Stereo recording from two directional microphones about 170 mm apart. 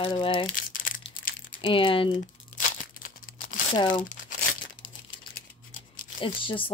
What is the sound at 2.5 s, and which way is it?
Crumpling, 50° left (ahead or behind).